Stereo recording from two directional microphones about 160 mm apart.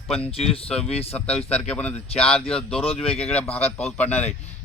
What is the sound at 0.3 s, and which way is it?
Speech, 35° left (ahead or behind).